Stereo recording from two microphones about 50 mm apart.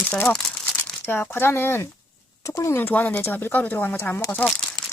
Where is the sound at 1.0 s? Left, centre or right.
Left.